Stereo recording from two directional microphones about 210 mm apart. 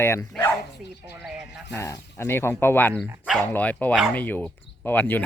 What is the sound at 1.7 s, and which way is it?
Speech, 15° left (ahead or behind).